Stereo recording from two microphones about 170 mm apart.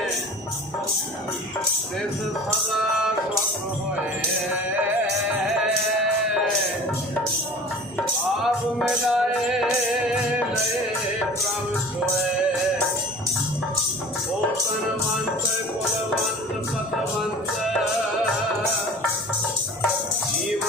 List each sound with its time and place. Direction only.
8.4 s music: centre (ahead or behind)